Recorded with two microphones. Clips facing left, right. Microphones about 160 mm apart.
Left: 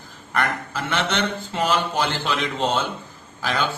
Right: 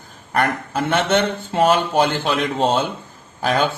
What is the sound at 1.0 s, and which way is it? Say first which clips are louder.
A man's voice: right 6 dB; 50° right (ahead or behind).